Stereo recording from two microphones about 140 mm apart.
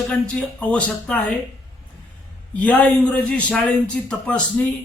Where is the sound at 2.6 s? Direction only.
10° left (ahead or behind).